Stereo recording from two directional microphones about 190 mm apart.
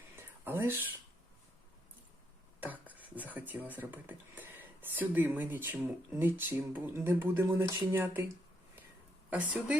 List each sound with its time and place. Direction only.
0.2 s whispering: 10° right (ahead or behind)
2.6 s speech: 10° right (ahead or behind)
9.3 s speech: 10° right (ahead or behind)